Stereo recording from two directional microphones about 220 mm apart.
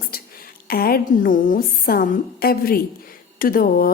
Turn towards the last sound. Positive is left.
turn(degrees=40)  # may be behind; listen again after turning